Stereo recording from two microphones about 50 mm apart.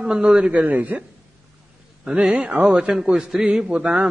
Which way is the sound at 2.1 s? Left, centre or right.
Right.